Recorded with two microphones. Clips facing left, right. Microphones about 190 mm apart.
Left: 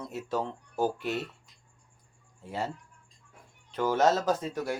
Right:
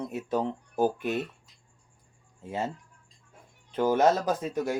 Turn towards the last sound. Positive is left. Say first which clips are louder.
# right 1 dB
turn(degrees=-15)  # may be behind; listen again after turning